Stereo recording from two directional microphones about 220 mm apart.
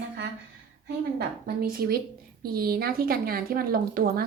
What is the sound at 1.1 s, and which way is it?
Speech, 45° right (ahead or behind).